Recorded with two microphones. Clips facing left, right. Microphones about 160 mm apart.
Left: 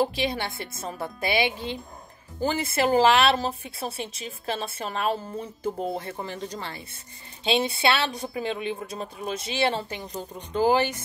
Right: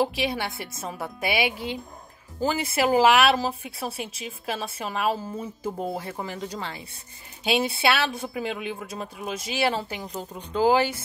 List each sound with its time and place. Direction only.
0.1 s a woman's voice: 10° right (ahead or behind)